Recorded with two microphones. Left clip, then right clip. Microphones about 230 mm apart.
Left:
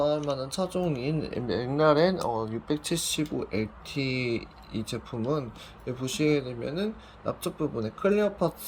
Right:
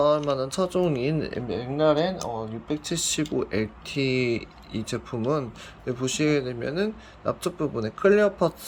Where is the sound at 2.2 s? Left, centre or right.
Left.